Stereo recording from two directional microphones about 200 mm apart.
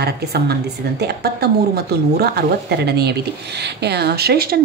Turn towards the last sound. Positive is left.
turn(degrees=-50)  # may be behind; listen again after turning